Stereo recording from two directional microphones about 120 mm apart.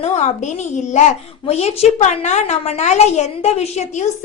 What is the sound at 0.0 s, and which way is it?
A woman's voice, 70° left (ahead or behind).